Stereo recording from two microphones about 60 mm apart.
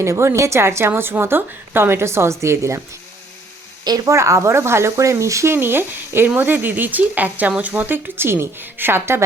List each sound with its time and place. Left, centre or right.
0.0 s a woman's voice: right
4.1 s a woman's voice: right
5.5 s speech: right